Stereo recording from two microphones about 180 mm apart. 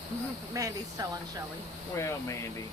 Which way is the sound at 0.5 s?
20° right (ahead or behind).